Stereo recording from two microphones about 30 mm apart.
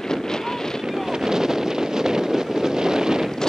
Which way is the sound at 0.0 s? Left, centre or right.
Centre.